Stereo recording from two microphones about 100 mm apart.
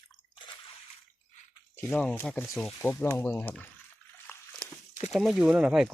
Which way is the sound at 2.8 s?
20° left (ahead or behind).